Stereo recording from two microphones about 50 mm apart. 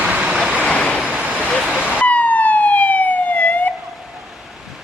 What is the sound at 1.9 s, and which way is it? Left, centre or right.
Emergency vehicle, left.